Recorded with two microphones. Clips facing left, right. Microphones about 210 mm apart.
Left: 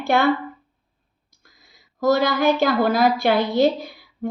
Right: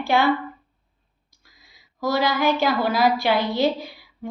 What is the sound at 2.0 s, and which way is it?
A woman's voice, 50° left (ahead or behind).